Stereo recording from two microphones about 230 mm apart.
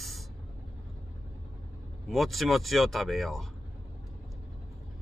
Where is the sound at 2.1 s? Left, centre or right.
Centre.